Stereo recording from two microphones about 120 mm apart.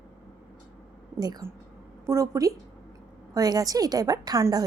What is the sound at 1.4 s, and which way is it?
A woman's voice, 20° right (ahead or behind).